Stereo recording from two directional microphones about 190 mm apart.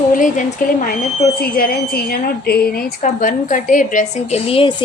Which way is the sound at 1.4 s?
55° left (ahead or behind).